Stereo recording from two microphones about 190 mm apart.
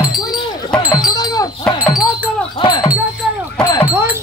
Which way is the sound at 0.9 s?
20° left (ahead or behind).